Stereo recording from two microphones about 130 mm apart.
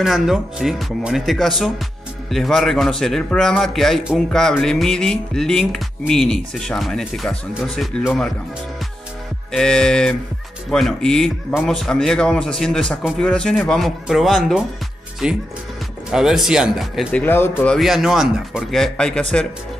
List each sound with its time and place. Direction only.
0.0 s speech: centre (ahead or behind)
9.5 s speech: 5° left (ahead or behind)
17.2 s speech: 15° left (ahead or behind)
17.7 s speech: 5° right (ahead or behind)